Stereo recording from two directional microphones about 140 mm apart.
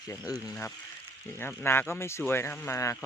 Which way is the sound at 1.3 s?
15° left (ahead or behind).